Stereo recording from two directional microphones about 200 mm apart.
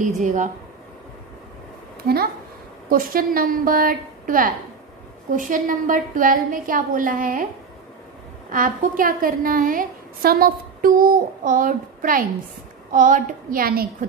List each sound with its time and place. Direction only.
0.0 s speech: 40° right (ahead or behind)
2.9 s a woman's voice: 45° right (ahead or behind)
8.5 s a woman's voice: 40° right (ahead or behind)